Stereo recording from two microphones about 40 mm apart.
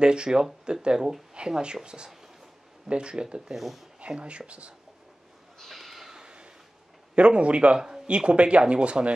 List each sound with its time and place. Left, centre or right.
0.0 s speech: right
3.5 s speech: centre
4.0 s speech: right
5.6 s a sound: centre
7.2 s speech: right
7.8 s speech: centre